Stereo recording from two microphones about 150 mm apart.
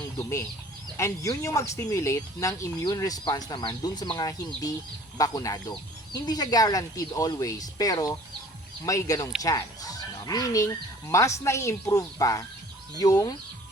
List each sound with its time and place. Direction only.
0.2 s speech: 20° left (ahead or behind)